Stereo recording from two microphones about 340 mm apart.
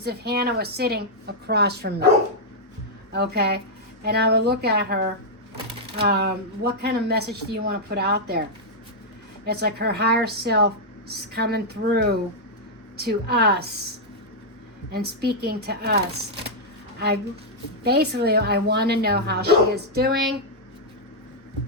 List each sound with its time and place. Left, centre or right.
0.0 s speech: right
3.1 s speech: right
6.0 s speech: right
9.5 s speech: right
14.9 s speech: right
17.8 s speech: right